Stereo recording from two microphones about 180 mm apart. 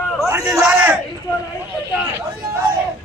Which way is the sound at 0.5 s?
5° right (ahead or behind).